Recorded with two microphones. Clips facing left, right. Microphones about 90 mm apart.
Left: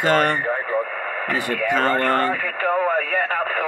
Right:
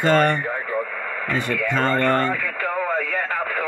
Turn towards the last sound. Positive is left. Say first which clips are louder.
# left 3 dB
turn(degrees=45)  # may be behind; listen again after turning